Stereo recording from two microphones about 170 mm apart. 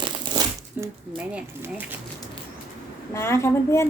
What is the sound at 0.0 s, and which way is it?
Crumpling, 25° right (ahead or behind).